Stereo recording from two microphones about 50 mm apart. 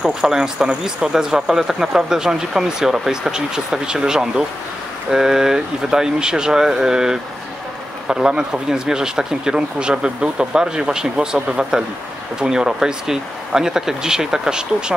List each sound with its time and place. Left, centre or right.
0.2 s speech: centre